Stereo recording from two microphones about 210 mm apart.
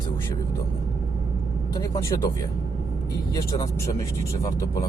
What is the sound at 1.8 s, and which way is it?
Speech, 15° left (ahead or behind).